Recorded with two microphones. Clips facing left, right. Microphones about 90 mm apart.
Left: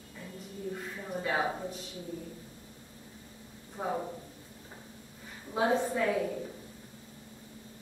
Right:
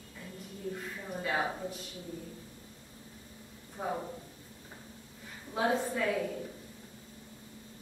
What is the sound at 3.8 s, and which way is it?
Speech, 20° left (ahead or behind).